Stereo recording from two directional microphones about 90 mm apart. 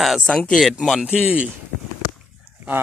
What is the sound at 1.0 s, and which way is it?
Speech, 10° right (ahead or behind).